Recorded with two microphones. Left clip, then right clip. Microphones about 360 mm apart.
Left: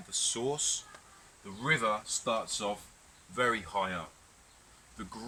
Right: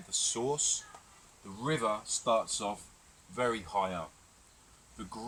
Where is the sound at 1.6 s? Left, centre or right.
Centre.